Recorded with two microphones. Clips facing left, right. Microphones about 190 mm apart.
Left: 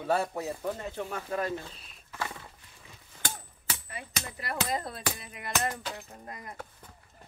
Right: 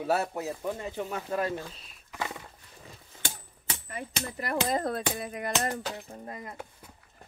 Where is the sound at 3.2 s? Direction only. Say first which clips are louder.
Left 1 dB; 25° right (ahead or behind).